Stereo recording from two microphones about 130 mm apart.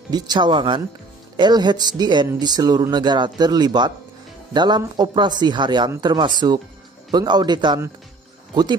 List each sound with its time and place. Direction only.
0.1 s a man's voice: 35° right (ahead or behind)